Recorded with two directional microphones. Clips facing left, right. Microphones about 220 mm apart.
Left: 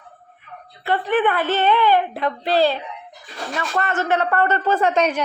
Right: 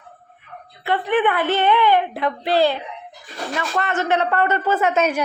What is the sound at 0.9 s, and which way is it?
A woman's voice, 15° right (ahead or behind).